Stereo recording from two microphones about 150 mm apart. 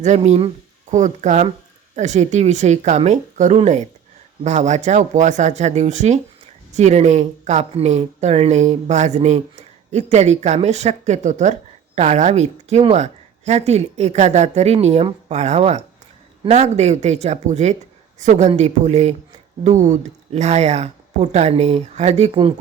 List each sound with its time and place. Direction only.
0.0 s speech: 50° right (ahead or behind)